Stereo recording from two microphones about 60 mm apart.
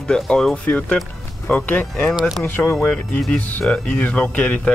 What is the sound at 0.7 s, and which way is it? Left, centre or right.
Speech, left.